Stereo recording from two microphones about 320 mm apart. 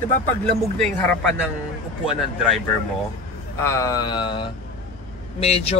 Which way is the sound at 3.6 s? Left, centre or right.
Centre.